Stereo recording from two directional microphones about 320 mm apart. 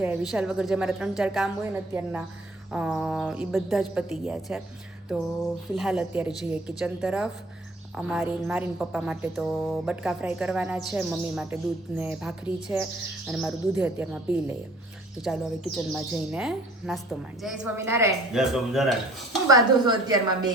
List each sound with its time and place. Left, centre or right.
0.0 s a woman's voice: centre
5.7 s a woman's voice: centre
19.5 s a woman's voice: centre